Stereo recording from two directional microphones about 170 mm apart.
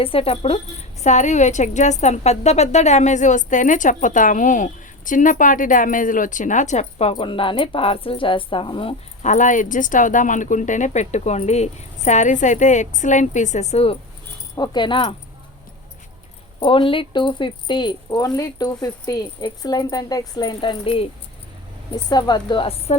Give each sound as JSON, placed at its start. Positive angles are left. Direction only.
{"t": 0.0, "sound": "a woman's voice", "side_deg": 35}
{"t": 7.1, "sound": "speech", "side_deg": 30}
{"t": 9.3, "sound": "a woman's voice", "side_deg": 50}
{"t": 14.5, "sound": "speech", "side_deg": 25}
{"t": 16.6, "sound": "speech", "side_deg": 30}
{"t": 22.1, "sound": "speech", "side_deg": 25}